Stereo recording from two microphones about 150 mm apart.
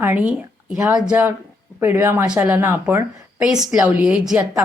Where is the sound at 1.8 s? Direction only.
15° right (ahead or behind).